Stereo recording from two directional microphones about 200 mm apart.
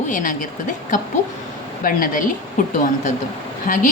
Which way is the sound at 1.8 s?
45° left (ahead or behind).